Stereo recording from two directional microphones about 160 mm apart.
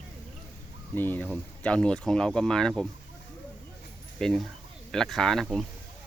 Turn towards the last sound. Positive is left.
turn(degrees=0)  # may be behind; listen again after turning